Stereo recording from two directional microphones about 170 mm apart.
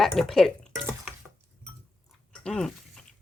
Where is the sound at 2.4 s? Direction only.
5° left (ahead or behind).